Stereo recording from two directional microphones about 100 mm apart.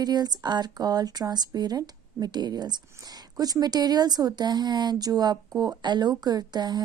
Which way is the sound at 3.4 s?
40° right (ahead or behind).